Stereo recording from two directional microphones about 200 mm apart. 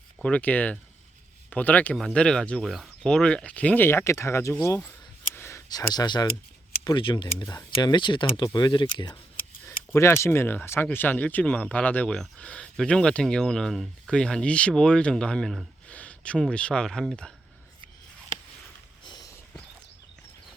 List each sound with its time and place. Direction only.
0.2 s speech: 5° left (ahead or behind)
5.3 s a sound: 10° left (ahead or behind)
6.8 s speech: 25° left (ahead or behind); by 17.3 s centre (ahead or behind)